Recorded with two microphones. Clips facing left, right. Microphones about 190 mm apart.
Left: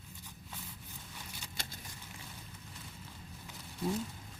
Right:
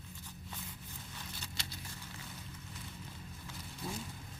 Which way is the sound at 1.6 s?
50° left (ahead or behind).